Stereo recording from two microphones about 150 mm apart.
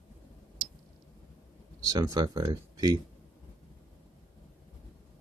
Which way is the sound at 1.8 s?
25° right (ahead or behind).